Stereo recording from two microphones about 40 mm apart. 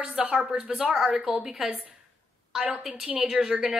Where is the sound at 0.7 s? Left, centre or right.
Centre.